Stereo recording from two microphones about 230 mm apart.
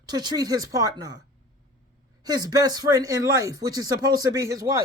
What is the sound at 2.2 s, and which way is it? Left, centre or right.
A man's voice, centre.